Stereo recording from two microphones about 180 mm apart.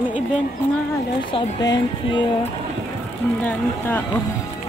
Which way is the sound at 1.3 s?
20° left (ahead or behind).